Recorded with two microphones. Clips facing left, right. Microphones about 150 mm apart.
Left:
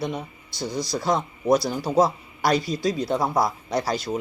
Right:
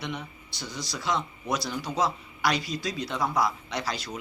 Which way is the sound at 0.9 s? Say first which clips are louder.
Left 4 dB; 45° left (ahead or behind).